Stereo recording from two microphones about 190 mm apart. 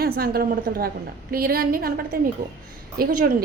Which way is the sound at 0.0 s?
50° right (ahead or behind).